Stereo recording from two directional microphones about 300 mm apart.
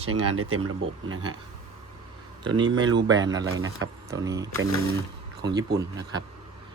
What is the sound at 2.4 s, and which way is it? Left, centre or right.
Speech, centre.